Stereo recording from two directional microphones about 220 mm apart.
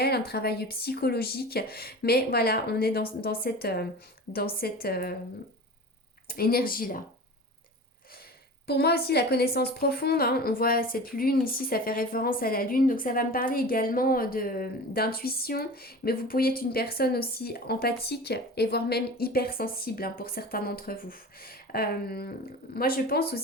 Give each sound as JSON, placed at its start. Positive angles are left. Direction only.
{"t": 0.0, "sound": "a woman's voice", "side_deg": 45}
{"t": 6.2, "sound": "a woman's voice", "side_deg": 45}
{"t": 8.6, "sound": "a woman's voice", "side_deg": 45}